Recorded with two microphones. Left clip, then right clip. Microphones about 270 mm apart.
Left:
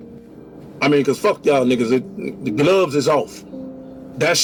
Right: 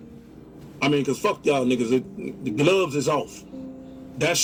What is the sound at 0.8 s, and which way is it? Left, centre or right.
A man's voice, left.